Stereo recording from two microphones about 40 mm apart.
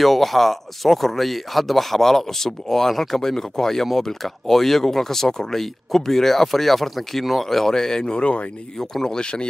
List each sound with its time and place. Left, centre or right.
0.0 s speech: centre; by 8.5 s left
8.7 s speech: centre